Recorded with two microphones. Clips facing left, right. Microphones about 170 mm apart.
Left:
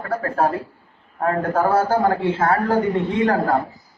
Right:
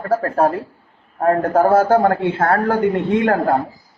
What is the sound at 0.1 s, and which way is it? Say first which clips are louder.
A man's voice: right 4 dB; 40° right (ahead or behind).